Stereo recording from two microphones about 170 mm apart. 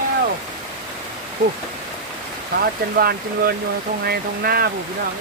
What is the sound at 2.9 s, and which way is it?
Speech, 65° right (ahead or behind).